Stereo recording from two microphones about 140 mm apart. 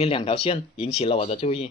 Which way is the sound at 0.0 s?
40° left (ahead or behind).